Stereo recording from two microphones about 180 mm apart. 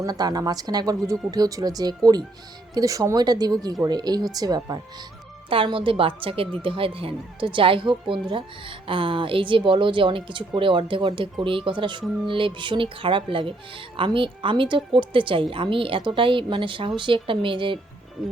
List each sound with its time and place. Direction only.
0.0 s speech: 20° right (ahead or behind)